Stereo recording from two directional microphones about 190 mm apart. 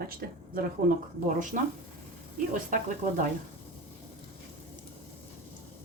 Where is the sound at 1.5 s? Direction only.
45° right (ahead or behind).